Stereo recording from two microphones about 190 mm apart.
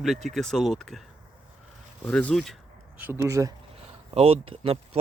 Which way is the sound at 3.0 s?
15° right (ahead or behind).